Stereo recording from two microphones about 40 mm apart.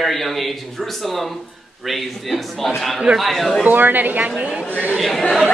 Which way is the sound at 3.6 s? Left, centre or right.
Right.